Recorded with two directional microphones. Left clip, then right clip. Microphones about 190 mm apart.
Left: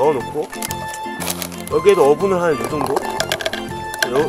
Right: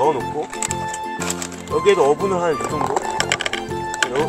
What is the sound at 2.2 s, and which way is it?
Speech, 20° left (ahead or behind).